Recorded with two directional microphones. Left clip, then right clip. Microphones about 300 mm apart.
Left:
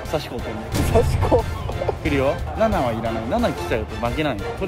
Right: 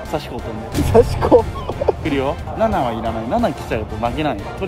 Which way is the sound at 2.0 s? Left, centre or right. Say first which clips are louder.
Right 1 dB; centre.